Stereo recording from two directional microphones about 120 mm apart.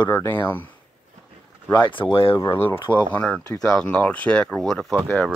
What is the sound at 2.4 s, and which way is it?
Speech, 20° left (ahead or behind).